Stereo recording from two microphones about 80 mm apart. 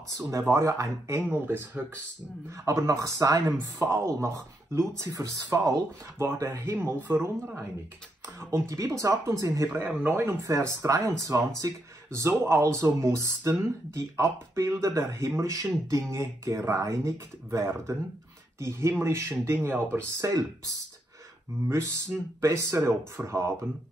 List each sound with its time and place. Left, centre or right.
0.3 s speech: right
1.2 s speech: right
2.6 s speech: right
6.1 s speech: right
8.4 s speech: right
9.7 s speech: right
10.4 s speech: right
22.4 s speech: right